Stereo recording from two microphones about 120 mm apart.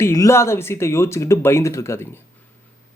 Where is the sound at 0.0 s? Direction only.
25° left (ahead or behind).